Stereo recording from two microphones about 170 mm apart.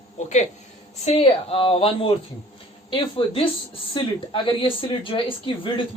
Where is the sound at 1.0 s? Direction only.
35° left (ahead or behind).